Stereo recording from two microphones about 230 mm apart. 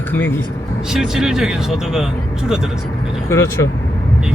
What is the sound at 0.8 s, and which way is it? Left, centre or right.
Speech, centre.